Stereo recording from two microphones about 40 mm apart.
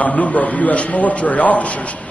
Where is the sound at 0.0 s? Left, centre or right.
Left.